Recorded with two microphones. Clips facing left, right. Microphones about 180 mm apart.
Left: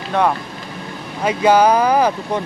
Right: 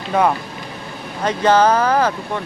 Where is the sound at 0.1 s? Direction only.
5° right (ahead or behind).